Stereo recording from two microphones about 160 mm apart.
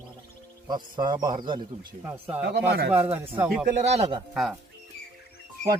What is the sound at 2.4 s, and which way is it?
Speech, 90° right.